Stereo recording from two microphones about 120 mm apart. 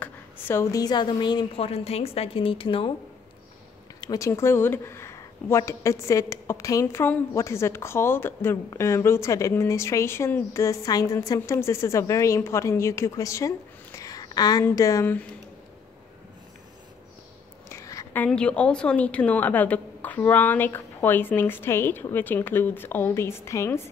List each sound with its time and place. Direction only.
0.0 s a woman's voice: 20° left (ahead or behind); by 1.5 s 40° left (ahead or behind)
1.6 s a woman's voice: 55° left (ahead or behind)
4.0 s speech: 30° left (ahead or behind)
14.6 s speech: 20° left (ahead or behind)
17.6 s a sound: 25° left (ahead or behind)
18.1 s a woman's voice: 10° left (ahead or behind)